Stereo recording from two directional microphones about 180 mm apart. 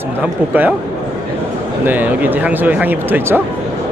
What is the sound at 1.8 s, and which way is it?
Speech, 10° right (ahead or behind).